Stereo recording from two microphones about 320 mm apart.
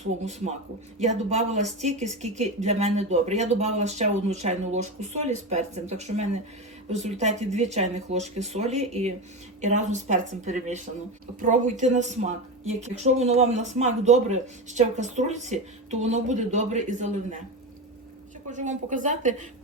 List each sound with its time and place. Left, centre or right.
0.3 s speech: centre
18.5 s speech: right